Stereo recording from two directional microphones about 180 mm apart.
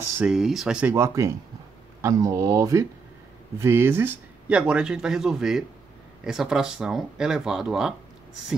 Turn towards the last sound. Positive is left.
turn(degrees=-5)  # may be behind; listen again after turning